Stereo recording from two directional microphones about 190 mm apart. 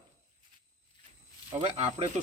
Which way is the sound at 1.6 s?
40° right (ahead or behind).